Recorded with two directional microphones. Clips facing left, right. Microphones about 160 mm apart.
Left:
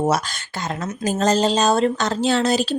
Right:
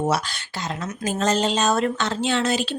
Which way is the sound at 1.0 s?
40° left (ahead or behind).